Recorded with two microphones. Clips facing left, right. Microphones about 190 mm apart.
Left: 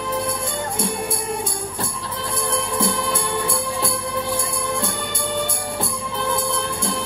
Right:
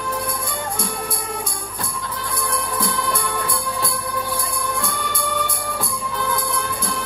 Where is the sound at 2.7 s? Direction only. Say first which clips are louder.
Left 2 dB; 25° left (ahead or behind).